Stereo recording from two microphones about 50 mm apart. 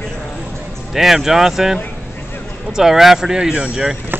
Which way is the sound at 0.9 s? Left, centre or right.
Centre.